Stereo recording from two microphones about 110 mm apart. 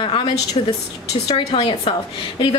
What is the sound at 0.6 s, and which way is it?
Speech, 60° left (ahead or behind).